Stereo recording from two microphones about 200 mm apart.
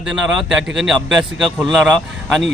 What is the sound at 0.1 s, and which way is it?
A man's voice, centre (ahead or behind).